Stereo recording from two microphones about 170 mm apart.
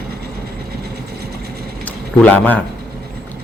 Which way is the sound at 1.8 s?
10° left (ahead or behind).